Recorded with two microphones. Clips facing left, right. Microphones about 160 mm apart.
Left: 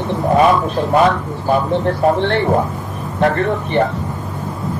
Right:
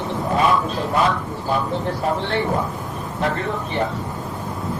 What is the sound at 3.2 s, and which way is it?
Speech, 65° left (ahead or behind).